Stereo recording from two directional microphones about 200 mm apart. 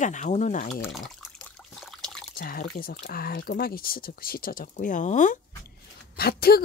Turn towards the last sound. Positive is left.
turn(degrees=50)  # may be behind; listen again after turning